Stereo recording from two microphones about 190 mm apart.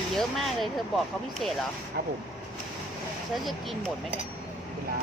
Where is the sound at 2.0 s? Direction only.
55° right (ahead or behind).